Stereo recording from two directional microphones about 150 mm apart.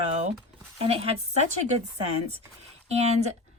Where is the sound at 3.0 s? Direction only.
45° right (ahead or behind).